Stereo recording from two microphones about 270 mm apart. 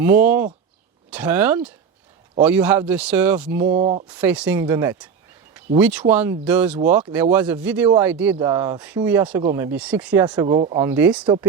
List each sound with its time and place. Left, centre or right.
0.0 s speech: centre
3.7 s speech: right
4.1 s speech: centre
10.4 s speech: centre
10.8 s speech: centre